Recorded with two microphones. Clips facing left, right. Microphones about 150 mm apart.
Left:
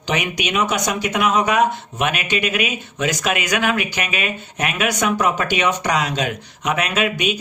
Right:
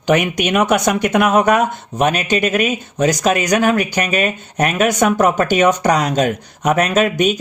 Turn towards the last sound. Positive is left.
turn(degrees=-45)  # may be behind; listen again after turning